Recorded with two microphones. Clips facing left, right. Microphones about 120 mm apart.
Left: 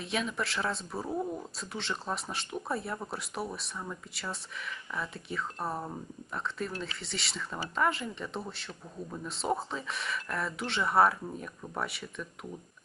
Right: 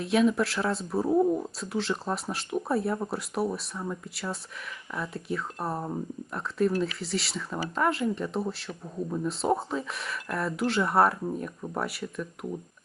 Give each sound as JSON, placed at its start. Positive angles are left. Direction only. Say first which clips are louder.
{"t": 0.0, "sound": "speech", "louder": "right 10 dB", "side_deg": 0}
{"t": 1.1, "sound": "speech", "louder": "right 11 dB", "side_deg": -20}
{"t": 1.5, "sound": "speech", "louder": "right 7 dB", "side_deg": 0}